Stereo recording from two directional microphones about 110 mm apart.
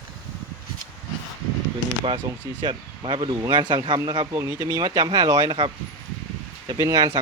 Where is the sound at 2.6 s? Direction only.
50° right (ahead or behind).